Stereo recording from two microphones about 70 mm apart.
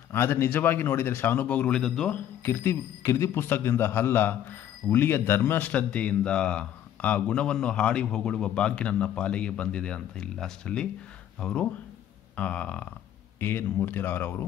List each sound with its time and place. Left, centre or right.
0.1 s speech: left
1.8 s speech: centre
2.4 s a man's voice: left
5.7 s speech: centre
13.4 s a man's voice: left